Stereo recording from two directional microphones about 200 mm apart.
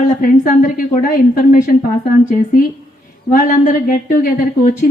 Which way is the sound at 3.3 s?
40° left (ahead or behind).